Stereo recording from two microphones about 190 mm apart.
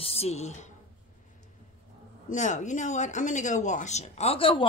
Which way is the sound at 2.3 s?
40° left (ahead or behind).